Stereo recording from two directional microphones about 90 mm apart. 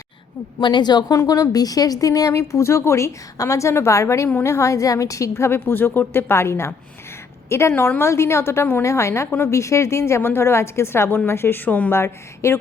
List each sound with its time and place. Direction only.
0.6 s a woman's voice: 55° left (ahead or behind)
1.1 s a woman's voice: 40° left (ahead or behind)